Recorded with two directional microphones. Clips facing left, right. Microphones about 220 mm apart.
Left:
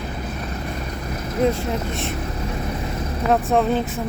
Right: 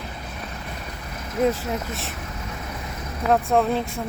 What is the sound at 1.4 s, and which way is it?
Speech, 5° right (ahead or behind).